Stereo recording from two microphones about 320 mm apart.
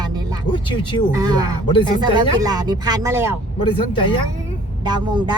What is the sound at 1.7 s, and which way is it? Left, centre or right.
Speech, centre.